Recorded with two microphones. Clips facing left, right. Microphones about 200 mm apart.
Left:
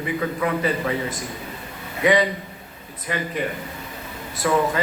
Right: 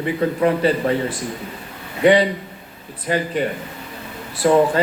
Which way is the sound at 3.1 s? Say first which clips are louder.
Right 5 dB; 30° right (ahead or behind).